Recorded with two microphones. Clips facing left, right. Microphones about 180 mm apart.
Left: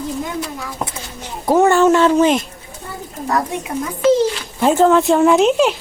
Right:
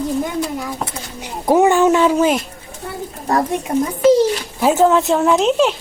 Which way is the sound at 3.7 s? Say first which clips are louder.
Right 7 dB; 30° right (ahead or behind).